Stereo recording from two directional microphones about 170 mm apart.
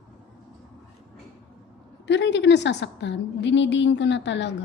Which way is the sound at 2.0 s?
90° left.